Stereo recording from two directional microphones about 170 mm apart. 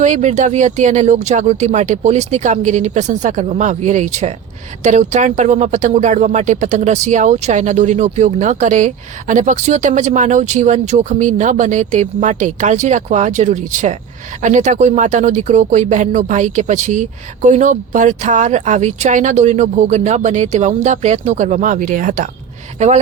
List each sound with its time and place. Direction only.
0.0 s speech: 45° right (ahead or behind)